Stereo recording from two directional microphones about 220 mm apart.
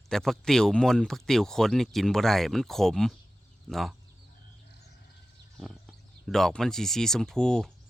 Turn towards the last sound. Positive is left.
turn(degrees=5)  # may be behind; listen again after turning